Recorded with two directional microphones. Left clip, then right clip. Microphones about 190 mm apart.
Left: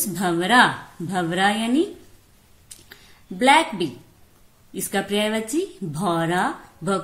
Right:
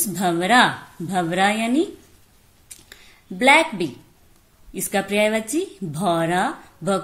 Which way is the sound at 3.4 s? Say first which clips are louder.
Right 1 dB; 25° right (ahead or behind).